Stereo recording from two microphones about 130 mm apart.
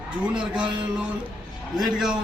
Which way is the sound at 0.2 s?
5° right (ahead or behind).